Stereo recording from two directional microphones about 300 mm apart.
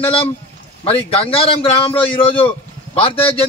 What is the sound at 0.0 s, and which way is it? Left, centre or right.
A man's voice, centre.